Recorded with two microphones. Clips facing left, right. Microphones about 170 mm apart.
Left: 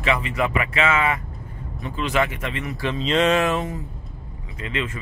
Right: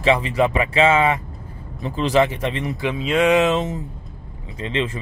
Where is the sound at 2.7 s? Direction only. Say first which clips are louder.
Even; 10° right (ahead or behind).